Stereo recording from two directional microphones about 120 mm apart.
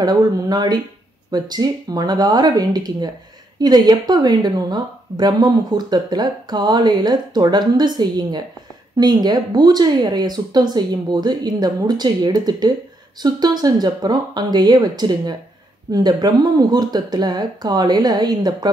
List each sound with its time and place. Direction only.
0.0 s speech: 35° right (ahead or behind)